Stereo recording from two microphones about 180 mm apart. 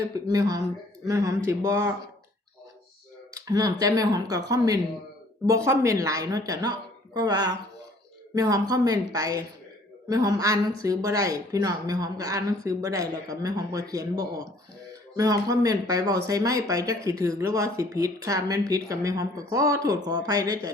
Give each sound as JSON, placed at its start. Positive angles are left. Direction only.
{"t": 0.1, "sound": "a woman's voice", "side_deg": -20}
{"t": 3.3, "sound": "a woman's voice", "side_deg": -20}